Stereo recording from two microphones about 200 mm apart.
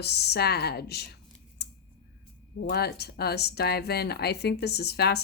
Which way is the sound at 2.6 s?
55° left (ahead or behind).